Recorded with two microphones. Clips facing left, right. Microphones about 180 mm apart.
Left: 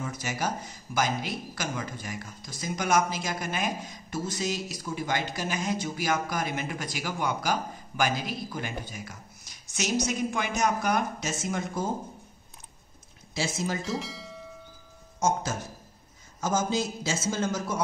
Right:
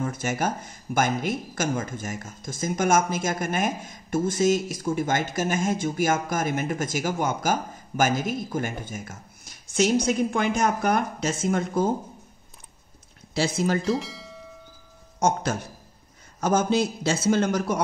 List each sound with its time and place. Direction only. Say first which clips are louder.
0.0 s speech: right 5 dB; 50° right (ahead or behind)
13.3 s speech: right 6 dB; 60° right (ahead or behind)
13.9 s bell: right 3 dB; centre (ahead or behind)
15.1 s a man's voice: right 4 dB; 60° right (ahead or behind)